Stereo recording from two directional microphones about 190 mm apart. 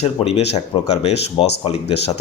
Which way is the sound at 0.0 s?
35° left (ahead or behind).